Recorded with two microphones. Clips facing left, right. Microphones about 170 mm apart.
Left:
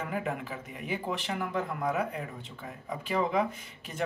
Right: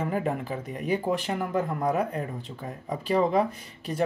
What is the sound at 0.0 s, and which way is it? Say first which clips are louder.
Speech: right 5 dB; 35° right (ahead or behind).